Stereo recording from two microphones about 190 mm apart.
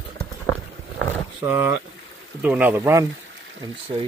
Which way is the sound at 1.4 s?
10° right (ahead or behind).